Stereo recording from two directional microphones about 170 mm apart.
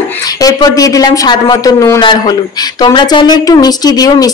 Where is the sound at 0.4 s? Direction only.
20° left (ahead or behind).